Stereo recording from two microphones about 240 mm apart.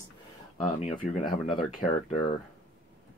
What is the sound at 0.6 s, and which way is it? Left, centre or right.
Speech, left.